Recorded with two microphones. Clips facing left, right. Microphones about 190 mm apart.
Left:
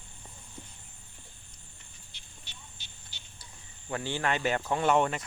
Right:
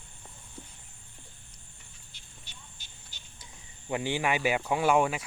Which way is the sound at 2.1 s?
45° right (ahead or behind).